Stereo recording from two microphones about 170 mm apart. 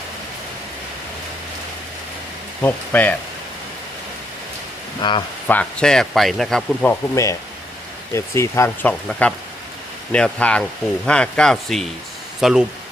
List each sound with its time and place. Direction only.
2.6 s speech: 10° left (ahead or behind)
5.0 s speech: 25° left (ahead or behind)
5.5 s speech: 5° left (ahead or behind)
7.2 s speech: 15° left (ahead or behind); by 12.6 s 5° right (ahead or behind)